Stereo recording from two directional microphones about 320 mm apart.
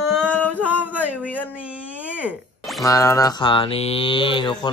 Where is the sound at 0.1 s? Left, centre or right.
Centre.